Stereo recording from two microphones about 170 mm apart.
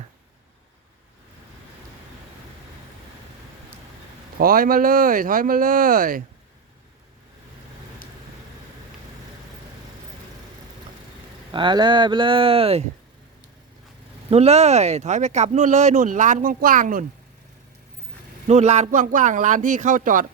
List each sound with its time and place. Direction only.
4.4 s speech: 55° right (ahead or behind)
11.5 s speech: 25° right (ahead or behind)
14.3 s speech: 40° right (ahead or behind)
18.4 s speech: 40° right (ahead or behind)